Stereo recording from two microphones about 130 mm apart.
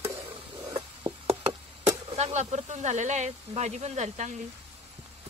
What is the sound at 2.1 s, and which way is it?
Speech, 60° right (ahead or behind).